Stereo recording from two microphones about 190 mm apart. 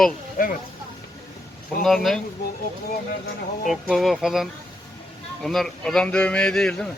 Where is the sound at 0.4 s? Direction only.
45° left (ahead or behind).